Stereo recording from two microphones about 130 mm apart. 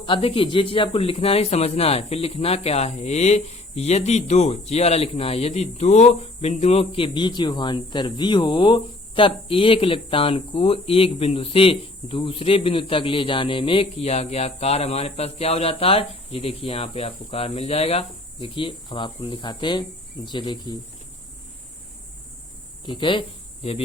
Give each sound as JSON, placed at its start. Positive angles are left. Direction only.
{"t": 0.0, "sound": "a man's voice", "side_deg": 40}
{"t": 22.9, "sound": "speech", "side_deg": 40}